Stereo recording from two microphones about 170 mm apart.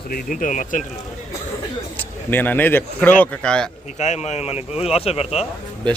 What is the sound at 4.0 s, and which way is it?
Speech, 40° left (ahead or behind).